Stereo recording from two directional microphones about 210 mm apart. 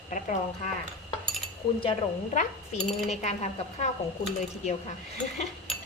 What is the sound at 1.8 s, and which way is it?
Cutlery, 30° left (ahead or behind).